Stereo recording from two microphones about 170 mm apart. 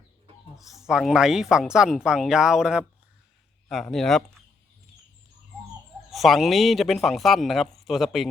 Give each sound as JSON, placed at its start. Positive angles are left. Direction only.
{"t": 0.5, "sound": "speech", "side_deg": 0}
{"t": 3.9, "sound": "speech", "side_deg": 0}
{"t": 6.1, "sound": "speech", "side_deg": 0}